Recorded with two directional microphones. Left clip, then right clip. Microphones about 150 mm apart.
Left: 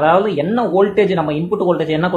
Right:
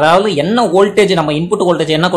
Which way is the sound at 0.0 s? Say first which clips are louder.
Right 3 dB; 35° right (ahead or behind).